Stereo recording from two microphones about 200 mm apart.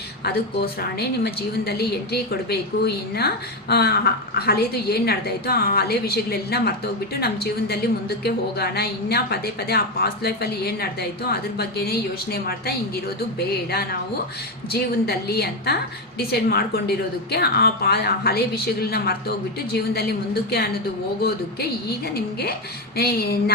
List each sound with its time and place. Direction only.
0.6 s a woman's voice: 50° left (ahead or behind)